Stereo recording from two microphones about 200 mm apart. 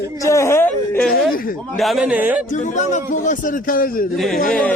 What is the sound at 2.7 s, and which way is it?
A man's voice, 35° left (ahead or behind).